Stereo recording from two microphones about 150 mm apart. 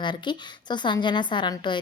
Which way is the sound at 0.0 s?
30° left (ahead or behind).